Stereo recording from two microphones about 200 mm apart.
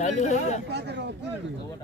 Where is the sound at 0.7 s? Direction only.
60° right (ahead or behind).